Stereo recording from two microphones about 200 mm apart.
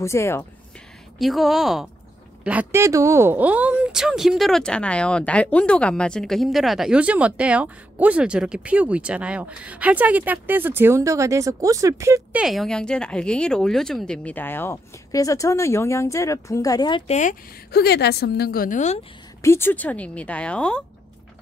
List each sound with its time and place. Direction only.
0.0 s speech: 15° left (ahead or behind)
1.1 s a woman's voice: centre (ahead or behind); by 17.0 s 20° left (ahead or behind)
17.1 s speech: 35° left (ahead or behind)
17.6 s a woman's voice: 55° left (ahead or behind)
19.4 s speech: 10° left (ahead or behind)